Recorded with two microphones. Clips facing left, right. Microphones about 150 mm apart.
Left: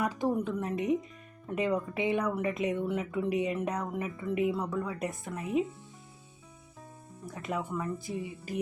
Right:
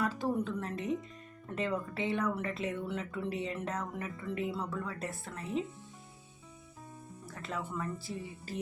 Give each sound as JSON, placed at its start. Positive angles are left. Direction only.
{"t": 0.0, "sound": "speech", "side_deg": 15}
{"t": 7.3, "sound": "speech", "side_deg": 15}